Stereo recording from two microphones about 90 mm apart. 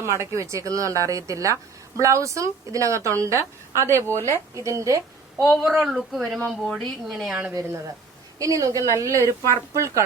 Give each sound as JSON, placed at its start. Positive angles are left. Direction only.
{"t": 0.0, "sound": "a woman's voice", "side_deg": -30}
{"t": 5.4, "sound": "speech", "side_deg": -5}
{"t": 8.4, "sound": "a woman's voice", "side_deg": -40}